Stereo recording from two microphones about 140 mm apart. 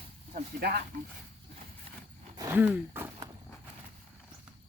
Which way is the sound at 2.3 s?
25° right (ahead or behind).